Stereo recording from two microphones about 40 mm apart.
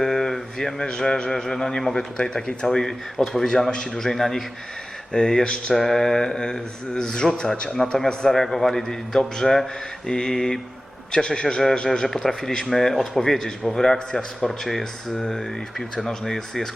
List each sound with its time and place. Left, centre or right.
0.0 s a man's voice: centre
2.1 s speech: left
2.7 s speech: centre
5.7 s speech: centre
10.3 s speech: centre
12.0 s speech: centre